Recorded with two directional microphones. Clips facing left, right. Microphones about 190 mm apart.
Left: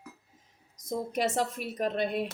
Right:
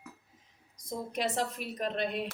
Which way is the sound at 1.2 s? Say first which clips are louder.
Left 2 dB; 45° left (ahead or behind).